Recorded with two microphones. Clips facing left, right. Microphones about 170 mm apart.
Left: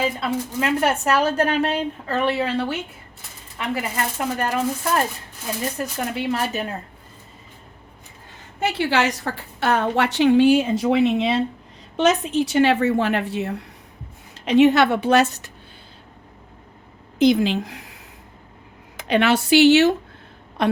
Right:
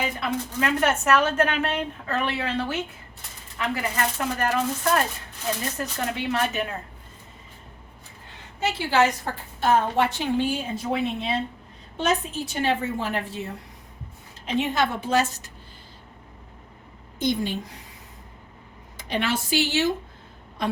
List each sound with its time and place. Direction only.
0.0 s speech: 30° left (ahead or behind)
3.8 s speech: 30° left (ahead or behind)
5.7 s speech: 35° left (ahead or behind)
8.6 s a woman's voice: 75° left (ahead or behind)
17.3 s a woman's voice: 90° left
19.0 s a woman's voice: 70° left (ahead or behind)